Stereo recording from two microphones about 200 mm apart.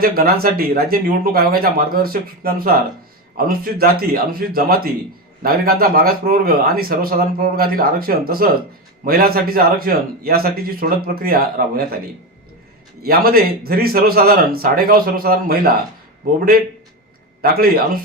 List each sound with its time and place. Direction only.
0.0 s speech: 50° right (ahead or behind)
13.0 s speech: 50° right (ahead or behind)
17.4 s a man's voice: 50° right (ahead or behind)